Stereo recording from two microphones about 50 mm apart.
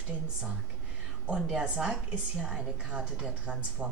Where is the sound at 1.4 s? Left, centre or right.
Centre.